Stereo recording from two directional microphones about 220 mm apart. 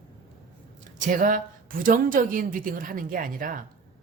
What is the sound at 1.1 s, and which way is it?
A woman's voice, 35° right (ahead or behind).